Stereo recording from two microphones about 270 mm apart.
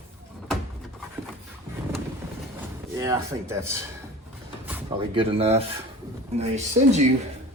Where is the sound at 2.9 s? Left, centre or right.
Centre.